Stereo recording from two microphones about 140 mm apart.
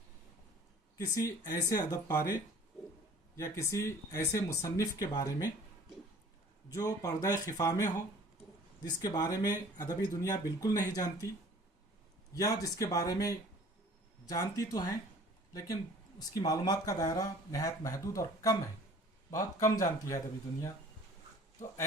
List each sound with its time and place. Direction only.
1.1 s speech: 25° left (ahead or behind)
3.3 s speech: 25° left (ahead or behind)
6.7 s speech: 25° left (ahead or behind)
12.3 s speech: 25° left (ahead or behind)